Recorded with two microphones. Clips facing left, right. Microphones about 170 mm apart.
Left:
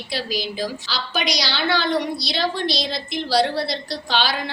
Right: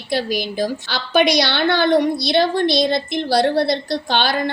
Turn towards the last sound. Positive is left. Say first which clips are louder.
# right 4 dB
turn(degrees=-55)  # may be behind; listen again after turning